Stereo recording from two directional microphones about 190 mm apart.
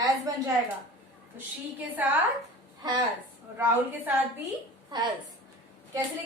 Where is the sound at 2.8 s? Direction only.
20° right (ahead or behind).